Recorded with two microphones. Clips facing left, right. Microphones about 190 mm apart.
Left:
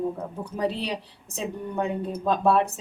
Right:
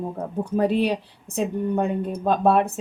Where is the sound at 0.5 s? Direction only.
55° right (ahead or behind).